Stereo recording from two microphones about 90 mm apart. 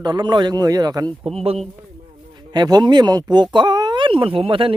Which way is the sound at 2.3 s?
50° right (ahead or behind).